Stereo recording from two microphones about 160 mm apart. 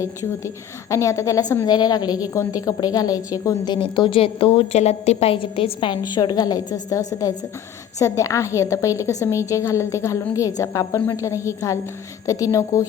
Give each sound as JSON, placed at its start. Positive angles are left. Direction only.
{"t": 0.0, "sound": "a woman's voice", "side_deg": 20}